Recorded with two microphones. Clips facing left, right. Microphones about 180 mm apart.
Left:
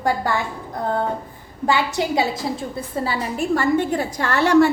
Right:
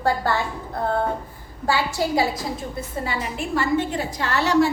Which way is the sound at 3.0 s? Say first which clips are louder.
Left 4 dB; 35° left (ahead or behind).